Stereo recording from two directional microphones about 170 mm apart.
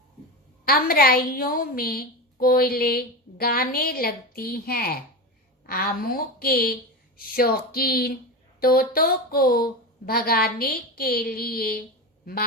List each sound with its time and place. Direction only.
0.6 s a woman's voice: 60° left (ahead or behind)